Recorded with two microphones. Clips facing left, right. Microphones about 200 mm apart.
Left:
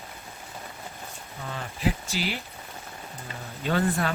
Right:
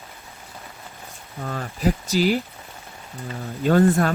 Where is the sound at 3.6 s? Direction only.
50° right (ahead or behind).